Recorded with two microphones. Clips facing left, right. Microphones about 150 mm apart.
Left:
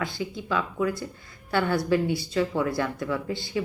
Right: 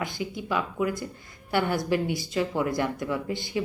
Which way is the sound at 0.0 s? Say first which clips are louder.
Left 1 dB; 20° right (ahead or behind).